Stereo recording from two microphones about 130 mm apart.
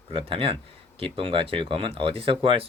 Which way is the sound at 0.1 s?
45° right (ahead or behind).